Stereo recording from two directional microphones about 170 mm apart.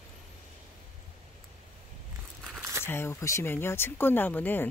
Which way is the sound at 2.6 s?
15° right (ahead or behind).